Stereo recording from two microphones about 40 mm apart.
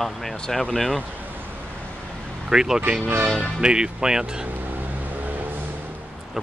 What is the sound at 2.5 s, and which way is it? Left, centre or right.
Speech, centre.